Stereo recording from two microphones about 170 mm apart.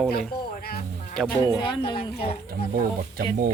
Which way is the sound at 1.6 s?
30° left (ahead or behind).